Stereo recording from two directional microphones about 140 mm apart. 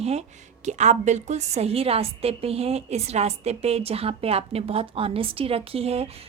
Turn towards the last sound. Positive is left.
turn(degrees=-45)  # may be behind; listen again after turning